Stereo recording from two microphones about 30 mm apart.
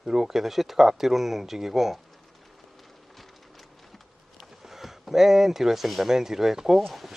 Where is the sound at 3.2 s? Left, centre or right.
Centre.